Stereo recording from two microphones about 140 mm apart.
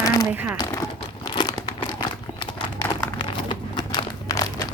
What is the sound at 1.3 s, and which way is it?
Crumpling, 30° left (ahead or behind).